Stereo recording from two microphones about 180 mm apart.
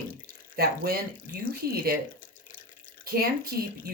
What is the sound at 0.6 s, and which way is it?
Speech, 55° right (ahead or behind).